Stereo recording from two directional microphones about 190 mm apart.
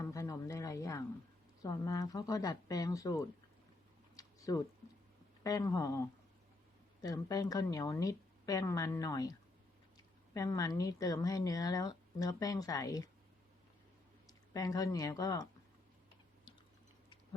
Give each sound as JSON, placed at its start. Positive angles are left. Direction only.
{"t": 0.0, "sound": "a sound", "side_deg": 15}
{"t": 1.6, "sound": "speech", "side_deg": 20}
{"t": 4.2, "sound": "a sound", "side_deg": 20}
{"t": 5.4, "sound": "speech", "side_deg": 15}
{"t": 7.0, "sound": "speech", "side_deg": 20}
{"t": 10.3, "sound": "speech", "side_deg": 20}
{"t": 14.3, "sound": "speech", "side_deg": 20}